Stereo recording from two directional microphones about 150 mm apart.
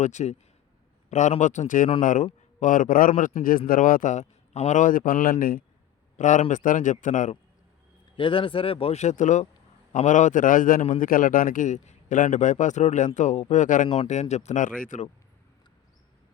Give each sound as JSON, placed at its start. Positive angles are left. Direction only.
{"t": 0.0, "sound": "a man's voice", "side_deg": 50}
{"t": 6.1, "sound": "a man's voice", "side_deg": 55}
{"t": 8.1, "sound": "a man's voice", "side_deg": 35}
{"t": 13.8, "sound": "speech", "side_deg": 35}
{"t": 14.1, "sound": "a man's voice", "side_deg": 50}